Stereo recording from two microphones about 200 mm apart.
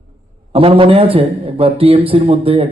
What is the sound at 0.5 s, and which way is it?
A man's voice, 30° right (ahead or behind).